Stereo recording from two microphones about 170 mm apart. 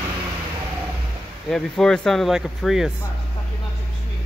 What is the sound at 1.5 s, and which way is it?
Speech, 5° left (ahead or behind).